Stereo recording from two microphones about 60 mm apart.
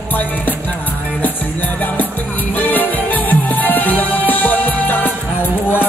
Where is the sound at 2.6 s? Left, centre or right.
Left.